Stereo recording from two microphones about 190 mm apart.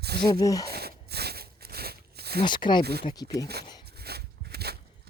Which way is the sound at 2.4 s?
25° left (ahead or behind).